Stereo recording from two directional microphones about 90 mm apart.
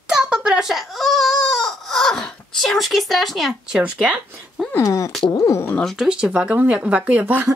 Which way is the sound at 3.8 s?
15° right (ahead or behind).